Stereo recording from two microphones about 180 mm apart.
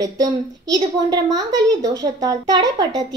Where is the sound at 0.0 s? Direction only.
20° right (ahead or behind).